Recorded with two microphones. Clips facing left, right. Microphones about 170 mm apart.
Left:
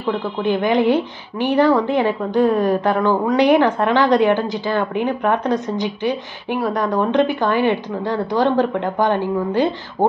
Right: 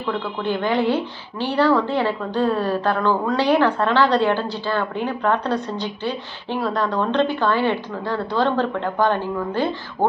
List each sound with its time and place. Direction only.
0.4 s a woman's voice: 15° left (ahead or behind)